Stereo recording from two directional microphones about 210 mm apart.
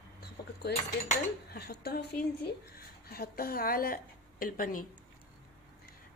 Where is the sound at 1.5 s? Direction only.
50° left (ahead or behind).